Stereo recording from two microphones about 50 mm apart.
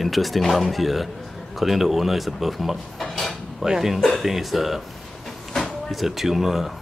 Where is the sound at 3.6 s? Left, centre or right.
Centre.